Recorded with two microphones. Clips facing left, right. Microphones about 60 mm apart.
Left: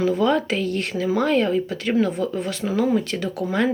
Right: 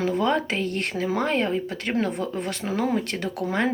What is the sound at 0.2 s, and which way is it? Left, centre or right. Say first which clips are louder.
Speech: left 3 dB; right.